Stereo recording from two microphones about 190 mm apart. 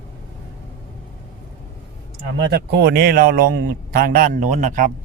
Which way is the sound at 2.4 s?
60° right (ahead or behind).